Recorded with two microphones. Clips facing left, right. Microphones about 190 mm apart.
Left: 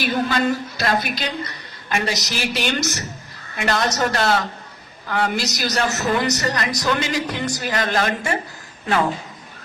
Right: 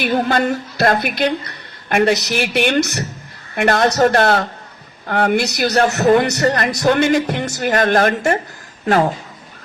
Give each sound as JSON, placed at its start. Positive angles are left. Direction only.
{"t": 0.0, "sound": "a woman's voice", "side_deg": -55}